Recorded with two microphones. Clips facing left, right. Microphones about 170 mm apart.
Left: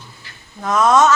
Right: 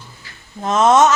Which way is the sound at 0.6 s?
25° right (ahead or behind).